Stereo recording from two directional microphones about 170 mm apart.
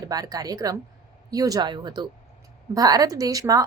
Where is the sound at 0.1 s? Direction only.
20° right (ahead or behind).